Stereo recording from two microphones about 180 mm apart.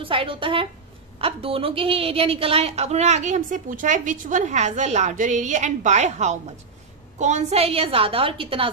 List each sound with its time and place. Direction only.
0.0 s a woman's voice: 30° right (ahead or behind)